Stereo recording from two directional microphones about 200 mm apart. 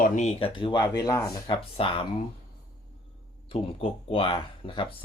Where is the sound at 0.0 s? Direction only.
35° left (ahead or behind).